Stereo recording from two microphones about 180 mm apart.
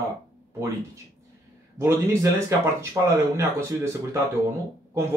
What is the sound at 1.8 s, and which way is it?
Speech, 15° right (ahead or behind).